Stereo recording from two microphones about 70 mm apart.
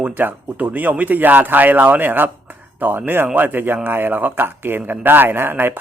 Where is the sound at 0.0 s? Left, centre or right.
Right.